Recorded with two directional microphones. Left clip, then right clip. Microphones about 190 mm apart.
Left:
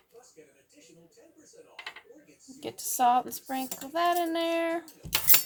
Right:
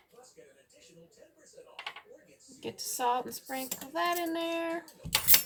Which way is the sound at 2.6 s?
50° left (ahead or behind).